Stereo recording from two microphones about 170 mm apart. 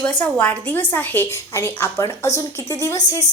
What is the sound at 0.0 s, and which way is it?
A woman's voice, 10° left (ahead or behind).